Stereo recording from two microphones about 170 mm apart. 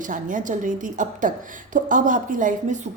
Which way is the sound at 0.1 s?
50° right (ahead or behind).